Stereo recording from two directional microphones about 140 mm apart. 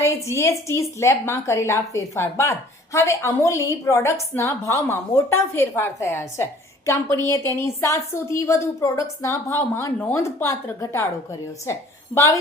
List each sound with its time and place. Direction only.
0.0 s a woman's voice: 20° left (ahead or behind)